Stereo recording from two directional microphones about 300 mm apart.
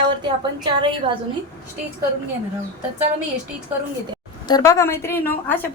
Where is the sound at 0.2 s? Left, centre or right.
Centre.